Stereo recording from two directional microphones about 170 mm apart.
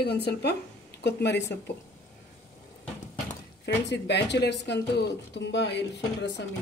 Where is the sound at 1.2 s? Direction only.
90° left.